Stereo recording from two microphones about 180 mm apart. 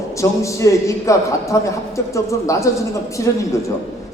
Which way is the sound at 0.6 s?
15° left (ahead or behind).